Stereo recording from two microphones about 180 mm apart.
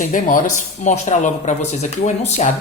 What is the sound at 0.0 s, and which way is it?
A woman's voice, 45° left (ahead or behind).